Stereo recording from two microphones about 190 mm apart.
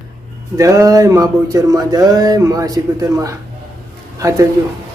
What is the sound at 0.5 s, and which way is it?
Speech, 15° right (ahead or behind).